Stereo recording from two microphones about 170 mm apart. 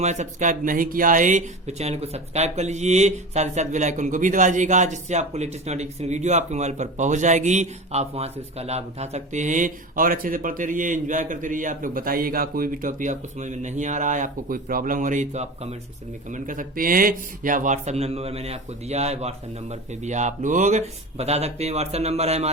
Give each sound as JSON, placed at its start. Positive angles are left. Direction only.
{"t": 0.0, "sound": "speech", "side_deg": -45}